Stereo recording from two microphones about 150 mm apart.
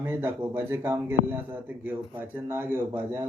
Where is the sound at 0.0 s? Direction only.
15° right (ahead or behind).